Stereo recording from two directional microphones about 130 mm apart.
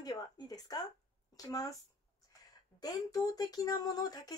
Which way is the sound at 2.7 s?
30° left (ahead or behind).